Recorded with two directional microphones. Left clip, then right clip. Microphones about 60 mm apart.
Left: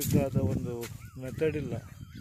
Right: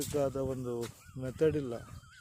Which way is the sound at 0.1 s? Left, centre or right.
Centre.